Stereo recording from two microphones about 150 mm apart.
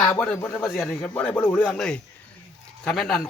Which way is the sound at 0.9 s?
10° left (ahead or behind).